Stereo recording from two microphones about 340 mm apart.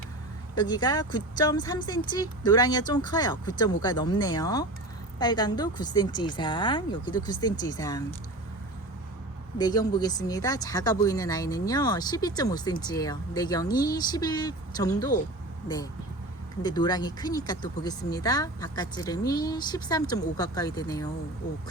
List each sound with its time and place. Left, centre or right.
0.5 s speech: centre
9.6 s speech: centre
16.6 s speech: centre